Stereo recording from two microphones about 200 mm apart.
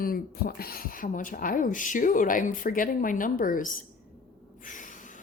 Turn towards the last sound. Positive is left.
turn(degrees=40)  # may be behind; listen again after turning